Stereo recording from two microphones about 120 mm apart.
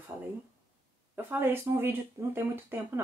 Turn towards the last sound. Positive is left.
turn(degrees=-20)  # may be behind; listen again after turning